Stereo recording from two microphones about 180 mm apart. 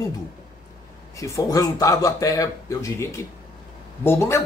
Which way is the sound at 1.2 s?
20° left (ahead or behind).